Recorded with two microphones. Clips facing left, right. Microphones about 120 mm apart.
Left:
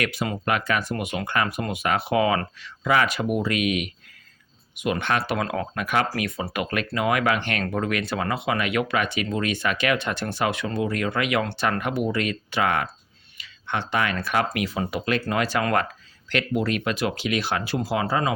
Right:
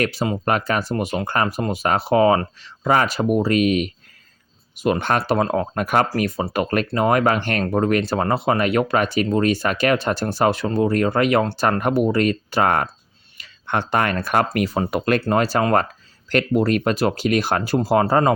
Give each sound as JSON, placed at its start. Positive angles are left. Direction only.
{"t": 0.0, "sound": "speech", "side_deg": -30}
{"t": 15.3, "sound": "speech", "side_deg": -40}